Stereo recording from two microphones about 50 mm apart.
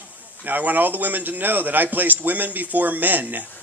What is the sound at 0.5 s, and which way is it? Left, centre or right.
A man's voice, right.